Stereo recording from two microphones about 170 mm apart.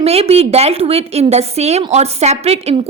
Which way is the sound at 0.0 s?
35° right (ahead or behind).